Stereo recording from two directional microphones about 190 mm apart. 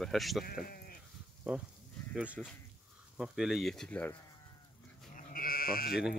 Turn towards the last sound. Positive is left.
turn(degrees=50)  # may be behind; listen again after turning